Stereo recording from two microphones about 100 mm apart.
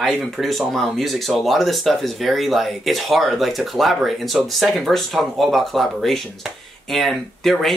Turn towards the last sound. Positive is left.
turn(degrees=0)  # may be behind; listen again after turning